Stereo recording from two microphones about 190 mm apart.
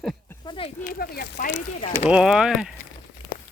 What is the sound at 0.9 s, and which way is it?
Speech, 50° left (ahead or behind).